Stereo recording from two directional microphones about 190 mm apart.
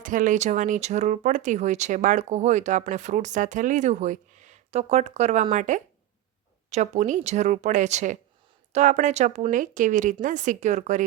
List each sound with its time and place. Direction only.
0.0 s speech: 45° right (ahead or behind)